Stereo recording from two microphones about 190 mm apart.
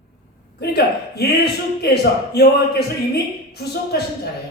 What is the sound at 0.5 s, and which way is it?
Speech, 60° left (ahead or behind).